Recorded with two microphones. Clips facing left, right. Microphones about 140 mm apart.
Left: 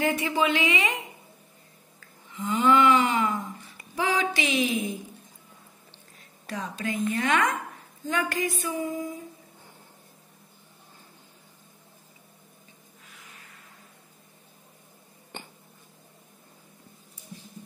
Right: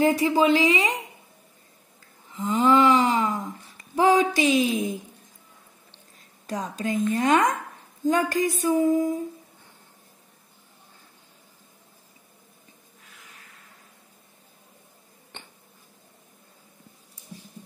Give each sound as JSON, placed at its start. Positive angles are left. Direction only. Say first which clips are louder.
{"t": 0.0, "sound": "music", "louder": "right 5 dB", "side_deg": -35}
{"t": 2.3, "sound": "a sound", "louder": "right 2 dB", "side_deg": -35}
{"t": 6.4, "sound": "music", "louder": "right 3 dB", "side_deg": -40}